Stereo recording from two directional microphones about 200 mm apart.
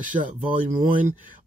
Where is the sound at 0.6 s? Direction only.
45° right (ahead or behind).